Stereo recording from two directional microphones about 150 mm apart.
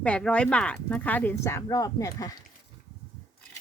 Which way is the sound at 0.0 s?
10° left (ahead or behind).